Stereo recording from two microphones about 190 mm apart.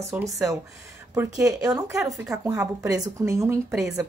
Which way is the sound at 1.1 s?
15° right (ahead or behind).